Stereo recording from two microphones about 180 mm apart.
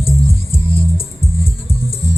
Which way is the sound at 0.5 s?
30° left (ahead or behind).